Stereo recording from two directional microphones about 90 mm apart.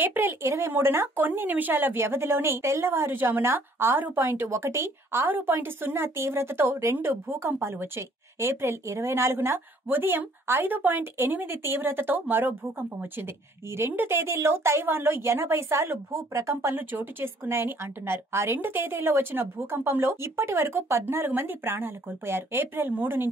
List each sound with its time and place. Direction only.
0.0 s speech: 20° right (ahead or behind)
13.7 s speech: 25° right (ahead or behind)
16.7 s speech: 25° right (ahead or behind)